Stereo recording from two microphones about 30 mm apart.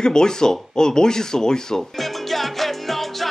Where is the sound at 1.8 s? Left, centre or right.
Centre.